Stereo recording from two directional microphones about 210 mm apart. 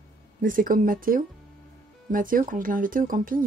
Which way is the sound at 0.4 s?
40° right (ahead or behind).